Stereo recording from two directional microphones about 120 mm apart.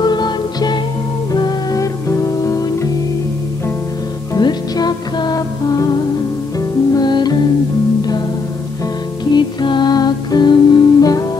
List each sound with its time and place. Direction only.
0.0 s music: 35° left (ahead or behind)
4.4 s music: 35° left (ahead or behind)
6.9 s music: 35° left (ahead or behind)
9.2 s music: 35° left (ahead or behind)